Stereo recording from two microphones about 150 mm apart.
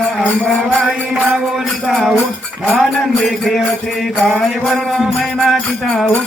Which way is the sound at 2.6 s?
Centre (ahead or behind).